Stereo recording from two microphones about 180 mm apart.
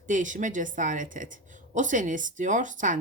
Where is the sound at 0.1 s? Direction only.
45° right (ahead or behind).